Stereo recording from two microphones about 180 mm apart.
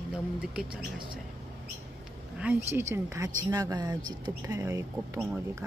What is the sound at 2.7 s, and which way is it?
Speech, 15° right (ahead or behind).